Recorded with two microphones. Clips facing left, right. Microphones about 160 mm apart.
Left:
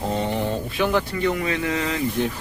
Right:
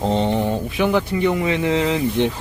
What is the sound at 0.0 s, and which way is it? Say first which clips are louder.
Speech: right 5 dB; 25° right (ahead or behind).